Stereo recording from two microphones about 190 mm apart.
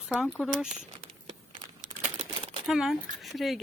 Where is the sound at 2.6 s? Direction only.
Centre (ahead or behind).